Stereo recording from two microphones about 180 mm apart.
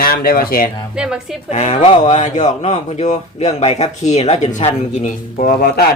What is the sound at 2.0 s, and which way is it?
Speech, 40° left (ahead or behind).